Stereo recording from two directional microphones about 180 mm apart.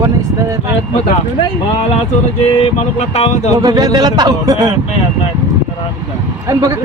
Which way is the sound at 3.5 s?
20° right (ahead or behind).